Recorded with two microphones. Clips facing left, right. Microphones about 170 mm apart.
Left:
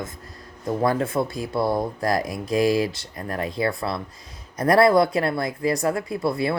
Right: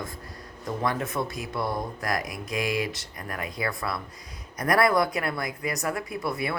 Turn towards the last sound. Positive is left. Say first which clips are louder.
# left 6 dB
turn(degrees=30)  # may be behind; listen again after turning